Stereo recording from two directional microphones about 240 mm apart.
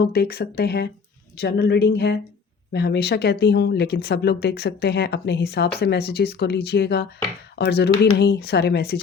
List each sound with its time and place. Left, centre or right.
0.0 s speech: left